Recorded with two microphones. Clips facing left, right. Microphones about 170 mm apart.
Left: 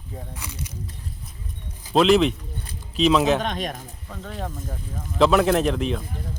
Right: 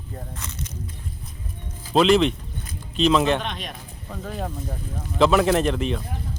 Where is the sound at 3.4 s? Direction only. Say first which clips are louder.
Left 5 dB; 45° left (ahead or behind).